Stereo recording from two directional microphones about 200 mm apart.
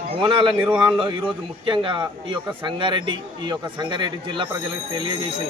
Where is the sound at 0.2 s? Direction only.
25° right (ahead or behind).